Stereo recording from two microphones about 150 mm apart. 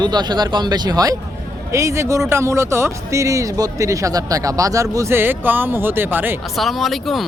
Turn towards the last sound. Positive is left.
turn(degrees=0)  # may be behind; listen again after turning